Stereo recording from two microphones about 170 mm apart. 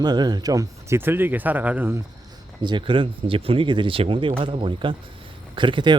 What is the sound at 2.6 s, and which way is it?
Speech, 30° right (ahead or behind).